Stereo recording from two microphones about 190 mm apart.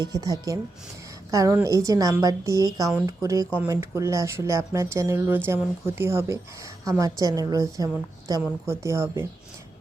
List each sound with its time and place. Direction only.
0.0 s a woman's voice: 20° right (ahead or behind)